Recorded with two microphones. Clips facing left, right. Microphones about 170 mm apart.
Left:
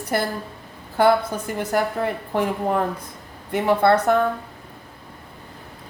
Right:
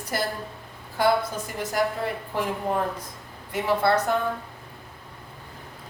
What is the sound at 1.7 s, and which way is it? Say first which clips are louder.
Speech: left 3 dB; 55° left (ahead or behind).